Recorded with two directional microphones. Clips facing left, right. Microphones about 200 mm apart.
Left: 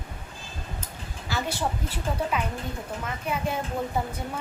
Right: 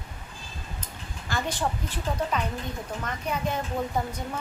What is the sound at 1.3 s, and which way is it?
A woman's voice, 10° left (ahead or behind).